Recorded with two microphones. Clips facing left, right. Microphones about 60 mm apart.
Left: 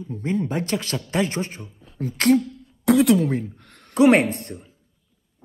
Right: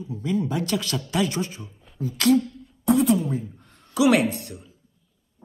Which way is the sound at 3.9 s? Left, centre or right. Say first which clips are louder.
Left 3 dB; left.